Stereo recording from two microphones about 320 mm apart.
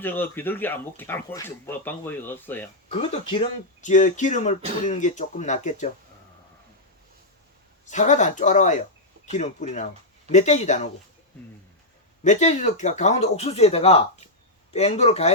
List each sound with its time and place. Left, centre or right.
0.0 s speech: centre
2.9 s speech: centre
7.9 s speech: left
12.2 s speech: left